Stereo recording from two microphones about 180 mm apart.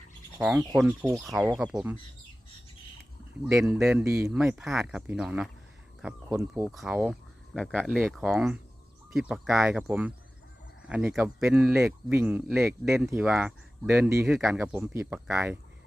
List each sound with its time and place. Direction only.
0.3 s speech: 5° right (ahead or behind)
1.2 s speech: centre (ahead or behind)
3.4 s speech: 5° right (ahead or behind)
4.0 s speech: 15° right (ahead or behind)
4.3 s speech: 5° right (ahead or behind)
6.0 s cricket: 5° right (ahead or behind)
6.5 s speech: 5° right (ahead or behind)
14.3 s speech: centre (ahead or behind)